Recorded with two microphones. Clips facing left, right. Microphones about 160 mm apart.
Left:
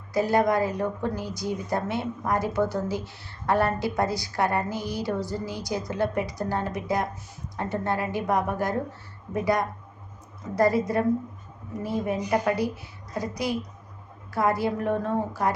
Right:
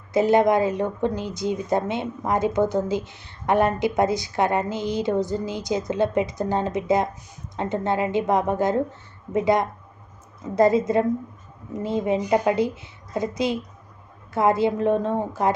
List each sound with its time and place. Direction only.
0.1 s speech: 20° right (ahead or behind)